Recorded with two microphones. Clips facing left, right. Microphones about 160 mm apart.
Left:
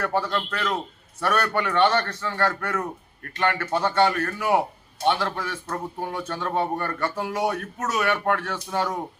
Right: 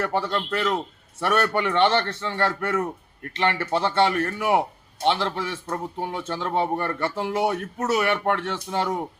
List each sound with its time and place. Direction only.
0.1 s speech: 25° right (ahead or behind)